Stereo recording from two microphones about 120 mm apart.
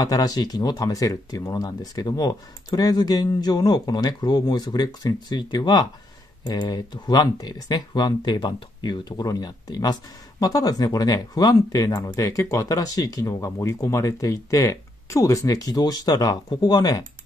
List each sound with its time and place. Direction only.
0.0 s speech: 35° left (ahead or behind)